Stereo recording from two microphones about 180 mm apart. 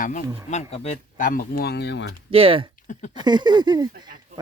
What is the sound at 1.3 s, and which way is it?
Speech, 55° left (ahead or behind).